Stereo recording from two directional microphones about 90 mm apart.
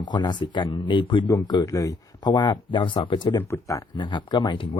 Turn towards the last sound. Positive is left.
turn(degrees=60)  # may be behind; listen again after turning